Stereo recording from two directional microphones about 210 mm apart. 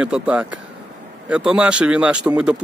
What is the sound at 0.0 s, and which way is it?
Speech, 5° right (ahead or behind).